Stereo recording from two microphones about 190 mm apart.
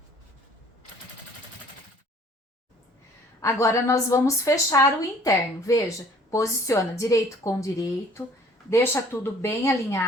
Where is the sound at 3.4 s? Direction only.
15° left (ahead or behind).